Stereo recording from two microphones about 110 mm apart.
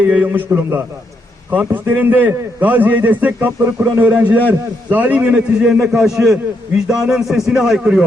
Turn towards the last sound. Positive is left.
turn(degrees=-5)  # may be behind; listen again after turning